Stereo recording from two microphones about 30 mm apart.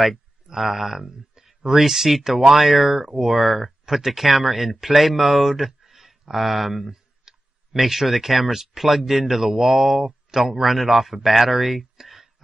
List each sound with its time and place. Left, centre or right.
0.5 s a man's voice: centre
6.9 s clicking: centre
7.8 s a man's voice: centre